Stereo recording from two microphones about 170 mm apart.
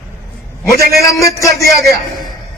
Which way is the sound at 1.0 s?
20° left (ahead or behind).